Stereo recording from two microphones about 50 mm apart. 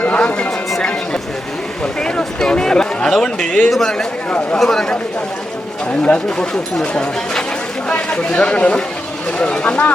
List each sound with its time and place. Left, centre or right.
0.0 s a sound: left
3.7 s speech: centre
4.3 s speech: left
4.6 s speech: centre
6.0 s speech: left
6.3 s speech: centre